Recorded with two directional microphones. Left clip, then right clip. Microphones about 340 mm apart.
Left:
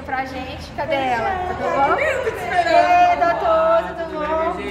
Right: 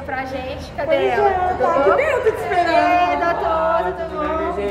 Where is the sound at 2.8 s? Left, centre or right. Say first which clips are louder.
Left 5 dB; centre.